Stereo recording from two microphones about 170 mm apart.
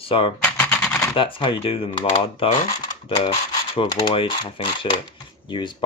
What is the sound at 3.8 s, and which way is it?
Speech, 30° left (ahead or behind).